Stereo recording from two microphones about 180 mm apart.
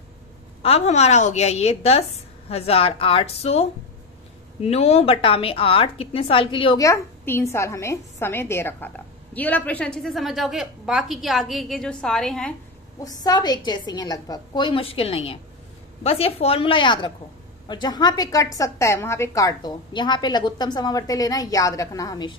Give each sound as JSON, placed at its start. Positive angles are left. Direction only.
{"t": 0.6, "sound": "a woman's voice", "side_deg": 35}
{"t": 6.8, "sound": "a woman's voice", "side_deg": 15}
{"t": 13.0, "sound": "a woman's voice", "side_deg": 20}